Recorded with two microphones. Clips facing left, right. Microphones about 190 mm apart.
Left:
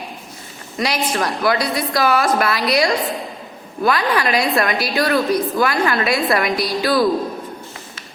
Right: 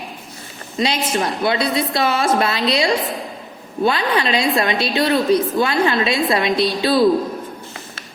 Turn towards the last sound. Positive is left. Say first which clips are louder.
# right 2 dB
turn(degrees=-25)  # may be behind; listen again after turning